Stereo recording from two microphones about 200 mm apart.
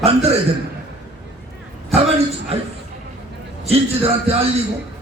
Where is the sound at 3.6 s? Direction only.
30° right (ahead or behind).